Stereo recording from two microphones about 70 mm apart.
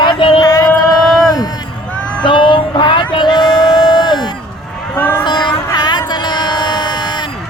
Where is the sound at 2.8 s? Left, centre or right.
Left.